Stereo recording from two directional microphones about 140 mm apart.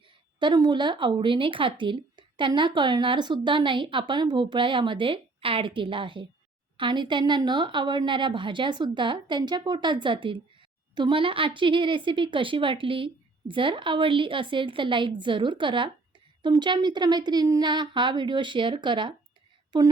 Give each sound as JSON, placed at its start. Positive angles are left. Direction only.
{"t": 0.3, "sound": "speech", "side_deg": -30}